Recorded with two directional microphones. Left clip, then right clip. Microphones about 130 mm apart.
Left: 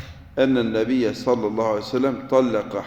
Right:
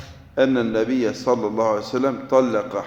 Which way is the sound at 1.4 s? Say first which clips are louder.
Right 2 dB; 10° left (ahead or behind).